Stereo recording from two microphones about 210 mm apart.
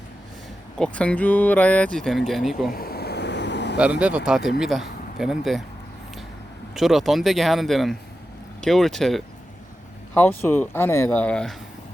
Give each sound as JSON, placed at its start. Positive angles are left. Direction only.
{"t": 0.8, "sound": "speech", "side_deg": 5}
{"t": 2.6, "sound": "a sound", "side_deg": 45}
{"t": 3.8, "sound": "speech", "side_deg": -5}
{"t": 6.7, "sound": "speech", "side_deg": 0}